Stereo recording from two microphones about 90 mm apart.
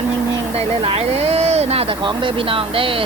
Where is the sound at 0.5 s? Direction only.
90° right.